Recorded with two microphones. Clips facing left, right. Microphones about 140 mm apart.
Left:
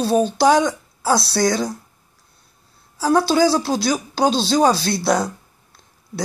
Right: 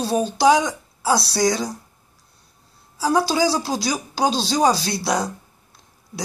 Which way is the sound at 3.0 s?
10° right (ahead or behind).